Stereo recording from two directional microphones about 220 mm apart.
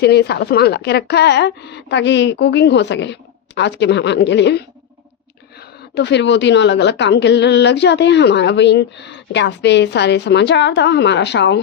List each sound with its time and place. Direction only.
0.0 s a woman's voice: 50° left (ahead or behind)